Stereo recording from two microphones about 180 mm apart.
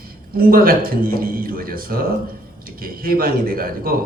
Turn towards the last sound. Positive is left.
turn(degrees=-55)  # may be behind; listen again after turning